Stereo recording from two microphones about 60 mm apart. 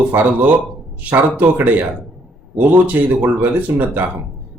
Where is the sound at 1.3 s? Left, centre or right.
Right.